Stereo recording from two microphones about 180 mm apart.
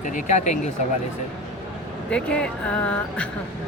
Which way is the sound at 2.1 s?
5° left (ahead or behind).